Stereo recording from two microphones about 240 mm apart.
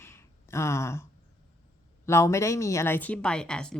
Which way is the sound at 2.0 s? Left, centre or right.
Centre.